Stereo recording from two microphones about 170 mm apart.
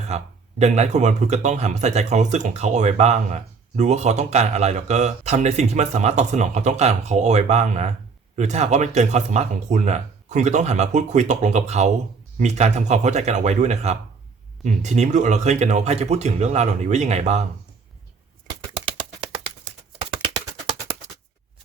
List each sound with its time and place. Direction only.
0.6 s speech: 40° right (ahead or behind)
18.7 s a sound: 30° right (ahead or behind)
20.2 s music: 30° right (ahead or behind)